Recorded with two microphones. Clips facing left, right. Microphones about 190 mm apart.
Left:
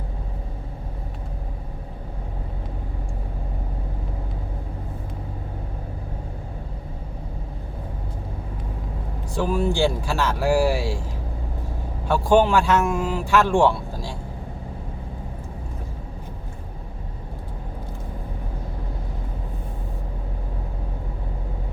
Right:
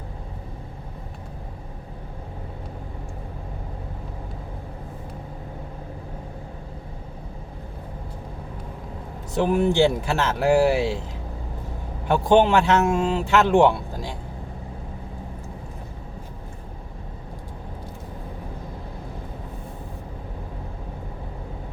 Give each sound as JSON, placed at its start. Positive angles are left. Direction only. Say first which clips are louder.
{"t": 9.3, "sound": "speech", "louder": "right 3 dB", "side_deg": -20}
{"t": 12.0, "sound": "speech", "louder": "right 1 dB", "side_deg": -20}